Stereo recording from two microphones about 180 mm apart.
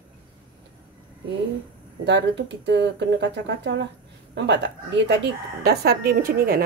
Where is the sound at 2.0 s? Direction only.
75° right (ahead or behind); by 6.6 s 55° right (ahead or behind).